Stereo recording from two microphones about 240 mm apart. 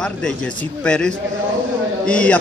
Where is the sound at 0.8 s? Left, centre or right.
Centre.